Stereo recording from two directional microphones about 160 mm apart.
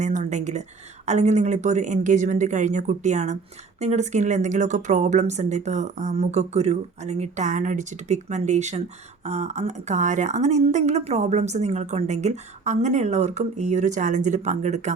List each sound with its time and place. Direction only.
0.0 s speech: 50° right (ahead or behind)